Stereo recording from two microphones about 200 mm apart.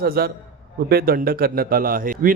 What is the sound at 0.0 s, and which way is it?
A man's voice, 50° right (ahead or behind).